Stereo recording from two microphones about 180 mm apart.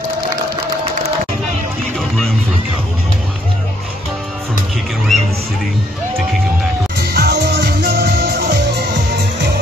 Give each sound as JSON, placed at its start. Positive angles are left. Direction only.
{"t": 5.1, "sound": "music", "side_deg": 0}
{"t": 7.0, "sound": "music", "side_deg": -65}